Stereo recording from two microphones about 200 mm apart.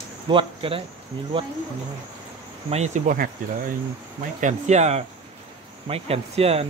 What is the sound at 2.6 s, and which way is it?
Speech, 35° right (ahead or behind).